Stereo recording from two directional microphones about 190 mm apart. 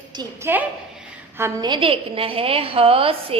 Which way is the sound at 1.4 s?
20° right (ahead or behind).